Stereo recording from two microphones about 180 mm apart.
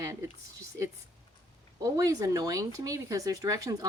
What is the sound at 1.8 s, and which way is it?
A woman's voice, 20° right (ahead or behind).